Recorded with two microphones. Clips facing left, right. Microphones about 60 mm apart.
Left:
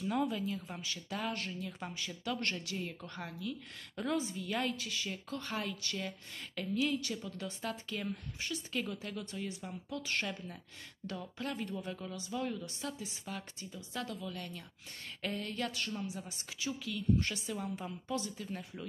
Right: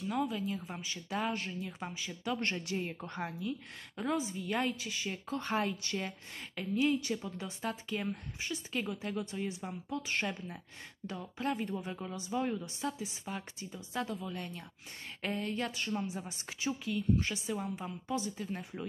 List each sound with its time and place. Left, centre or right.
0.0 s speech: centre
0.8 s speech: centre
2.3 s a woman's voice: right
3.9 s a woman's voice: centre; by 17.0 s right
17.2 s a woman's voice: centre